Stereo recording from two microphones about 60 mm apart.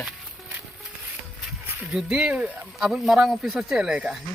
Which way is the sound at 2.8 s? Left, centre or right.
Centre.